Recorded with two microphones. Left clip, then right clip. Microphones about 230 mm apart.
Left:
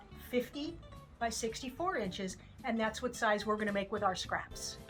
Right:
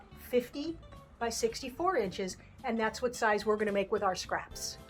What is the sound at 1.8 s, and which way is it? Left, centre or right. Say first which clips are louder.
Speech: right 6 dB; right.